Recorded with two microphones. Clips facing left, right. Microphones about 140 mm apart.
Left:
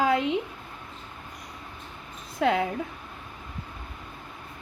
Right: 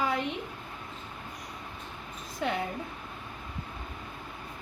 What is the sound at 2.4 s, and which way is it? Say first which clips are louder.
Speech: left 7 dB; 90° left.